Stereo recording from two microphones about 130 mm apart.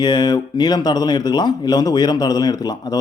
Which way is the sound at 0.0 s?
35° left (ahead or behind).